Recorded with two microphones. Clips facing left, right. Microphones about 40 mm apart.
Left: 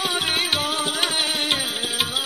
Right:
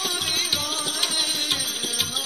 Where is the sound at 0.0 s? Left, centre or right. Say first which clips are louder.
Left 4 dB; left.